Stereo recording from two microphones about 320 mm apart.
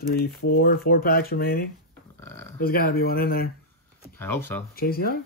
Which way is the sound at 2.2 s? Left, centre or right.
Centre.